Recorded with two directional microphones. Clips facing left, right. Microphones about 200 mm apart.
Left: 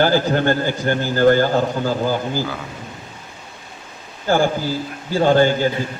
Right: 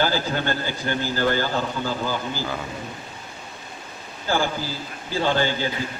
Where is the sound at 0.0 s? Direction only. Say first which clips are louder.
Left 7 dB; 50° left (ahead or behind).